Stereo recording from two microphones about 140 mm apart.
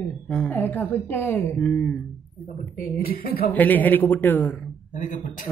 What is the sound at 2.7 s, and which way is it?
Speech, 90° left.